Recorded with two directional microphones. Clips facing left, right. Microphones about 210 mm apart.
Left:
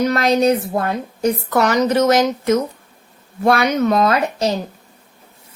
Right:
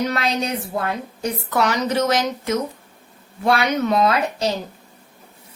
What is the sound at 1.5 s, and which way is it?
Speech, 45° left (ahead or behind).